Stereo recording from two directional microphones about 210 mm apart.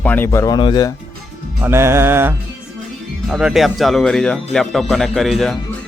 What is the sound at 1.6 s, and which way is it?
Music, 10° right (ahead or behind).